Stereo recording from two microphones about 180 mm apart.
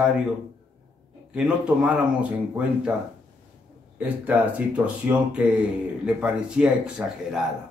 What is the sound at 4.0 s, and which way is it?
Speech, 10° right (ahead or behind).